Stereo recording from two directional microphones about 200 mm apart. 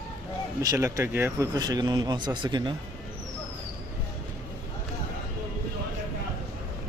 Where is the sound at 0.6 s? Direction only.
15° right (ahead or behind).